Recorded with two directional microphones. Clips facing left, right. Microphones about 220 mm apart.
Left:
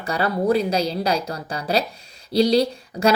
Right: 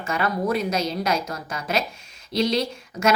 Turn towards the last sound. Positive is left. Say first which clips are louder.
# left 4 dB
turn(degrees=35)  # may be behind; listen again after turning